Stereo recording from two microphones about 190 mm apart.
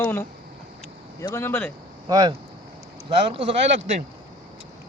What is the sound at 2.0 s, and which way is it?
Speech, 20° right (ahead or behind).